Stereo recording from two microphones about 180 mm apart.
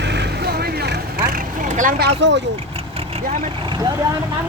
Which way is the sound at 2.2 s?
85° right.